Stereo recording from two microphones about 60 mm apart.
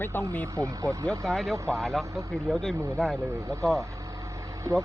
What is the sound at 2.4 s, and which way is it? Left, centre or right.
Speech, centre.